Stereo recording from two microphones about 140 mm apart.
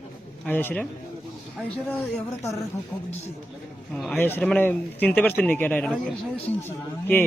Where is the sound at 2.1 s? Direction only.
20° left (ahead or behind).